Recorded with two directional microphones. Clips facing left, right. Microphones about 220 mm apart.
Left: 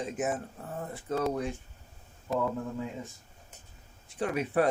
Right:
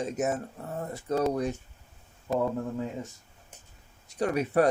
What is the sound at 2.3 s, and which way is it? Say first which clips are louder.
Speech: right 3 dB; centre (ahead or behind).